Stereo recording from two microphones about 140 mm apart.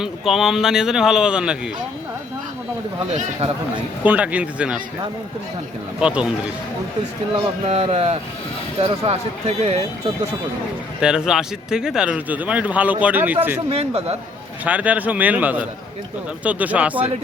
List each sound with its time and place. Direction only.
0.0 s speech: centre (ahead or behind)
3.1 s speech: 50° right (ahead or behind)
4.0 s speech: 10° right (ahead or behind)
6.0 s speech: 5° right (ahead or behind)
7.7 s speech: 45° right (ahead or behind)
11.0 s speech: 5° right (ahead or behind)
13.7 s speech: 45° right (ahead or behind)
14.6 s speech: 10° right (ahead or behind)